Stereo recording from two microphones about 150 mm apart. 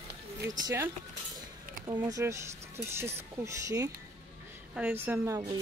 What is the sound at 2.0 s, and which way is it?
A woman's voice, 20° right (ahead or behind).